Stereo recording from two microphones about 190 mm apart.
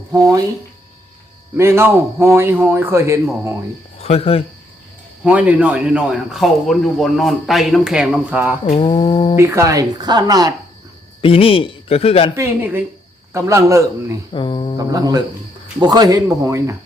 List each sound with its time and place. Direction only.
0.1 s a man's voice: 20° right (ahead or behind)
1.5 s a man's voice: 15° right (ahead or behind)
3.9 s speech: 35° left (ahead or behind)
5.2 s speech: 5° right (ahead or behind)
8.7 s a man's voice: 25° left (ahead or behind)
9.4 s speech: 15° right (ahead or behind)
11.2 s a man's voice: 30° left (ahead or behind)
12.4 s a man's voice: 10° right (ahead or behind)
14.3 s a man's voice: 25° left (ahead or behind)
14.8 s speech: 20° right (ahead or behind)